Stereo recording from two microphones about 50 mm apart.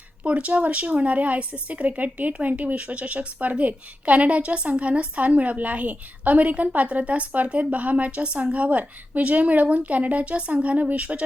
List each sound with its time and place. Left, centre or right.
0.3 s a woman's voice: right